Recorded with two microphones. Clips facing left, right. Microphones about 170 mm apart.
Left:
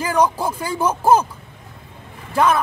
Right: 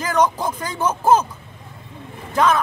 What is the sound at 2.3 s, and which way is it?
Speech, 10° left (ahead or behind).